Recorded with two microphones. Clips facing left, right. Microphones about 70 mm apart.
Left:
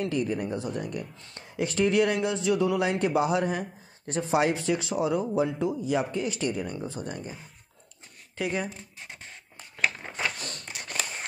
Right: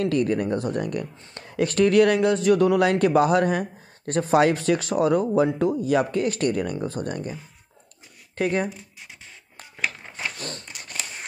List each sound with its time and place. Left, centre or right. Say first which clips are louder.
0.0 s speech: right 6 dB; right
8.4 s speech: right 6 dB; right